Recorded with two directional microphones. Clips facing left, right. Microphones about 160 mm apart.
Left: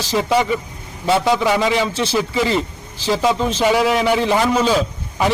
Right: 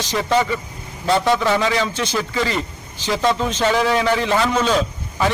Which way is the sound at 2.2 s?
15° left (ahead or behind).